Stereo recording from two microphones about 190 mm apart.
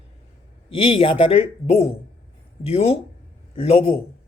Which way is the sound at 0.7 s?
30° left (ahead or behind).